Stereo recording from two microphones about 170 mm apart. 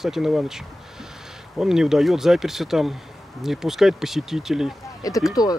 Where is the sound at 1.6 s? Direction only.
5° right (ahead or behind).